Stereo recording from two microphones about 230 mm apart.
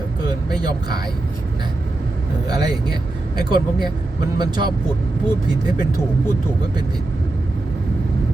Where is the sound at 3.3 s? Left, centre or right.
Centre.